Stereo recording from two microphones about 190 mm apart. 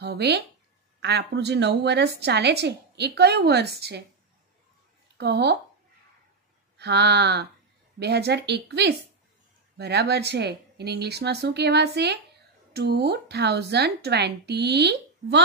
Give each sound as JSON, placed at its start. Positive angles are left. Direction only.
{"t": 0.0, "sound": "a woman's voice", "side_deg": -60}
{"t": 5.1, "sound": "speech", "side_deg": -65}
{"t": 6.8, "sound": "a woman's voice", "side_deg": -60}